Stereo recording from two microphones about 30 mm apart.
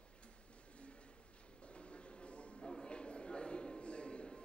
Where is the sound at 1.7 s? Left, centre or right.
Left.